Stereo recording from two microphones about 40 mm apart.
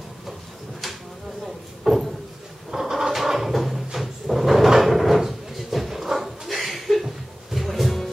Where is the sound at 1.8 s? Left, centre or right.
Centre.